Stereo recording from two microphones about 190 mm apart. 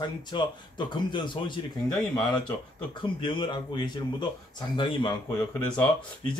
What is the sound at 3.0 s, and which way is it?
Speech, 25° left (ahead or behind).